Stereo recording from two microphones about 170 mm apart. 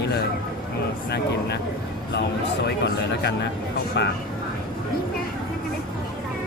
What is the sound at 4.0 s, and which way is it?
Speech, 80° left.